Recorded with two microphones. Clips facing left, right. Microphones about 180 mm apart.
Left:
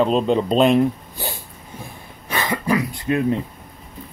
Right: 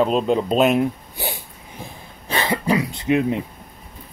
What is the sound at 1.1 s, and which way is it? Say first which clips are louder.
Dog: right 1 dB; 15° right (ahead or behind).